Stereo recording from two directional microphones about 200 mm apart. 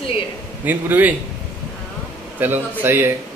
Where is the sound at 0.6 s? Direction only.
10° right (ahead or behind).